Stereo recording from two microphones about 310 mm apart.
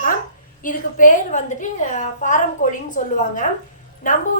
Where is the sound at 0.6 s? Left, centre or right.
Left.